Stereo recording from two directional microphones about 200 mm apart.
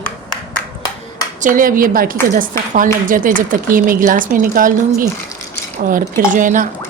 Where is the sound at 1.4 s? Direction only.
40° right (ahead or behind).